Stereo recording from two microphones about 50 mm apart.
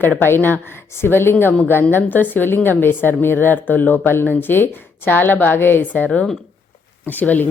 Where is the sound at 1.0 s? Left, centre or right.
Left.